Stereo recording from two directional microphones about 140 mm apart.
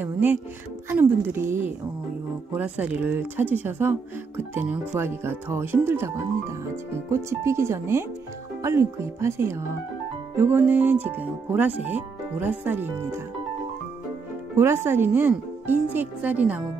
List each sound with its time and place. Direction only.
0.0 s speech: 10° right (ahead or behind)
14.6 s speech: 20° right (ahead or behind)